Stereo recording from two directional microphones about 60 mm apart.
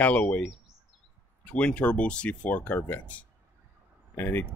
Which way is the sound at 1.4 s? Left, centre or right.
Centre.